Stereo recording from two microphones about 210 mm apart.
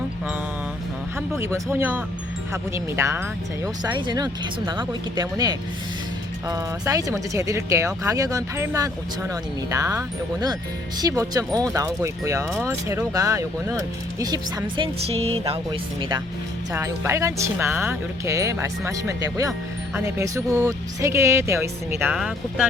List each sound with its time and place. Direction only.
1.4 s speech: 15° right (ahead or behind)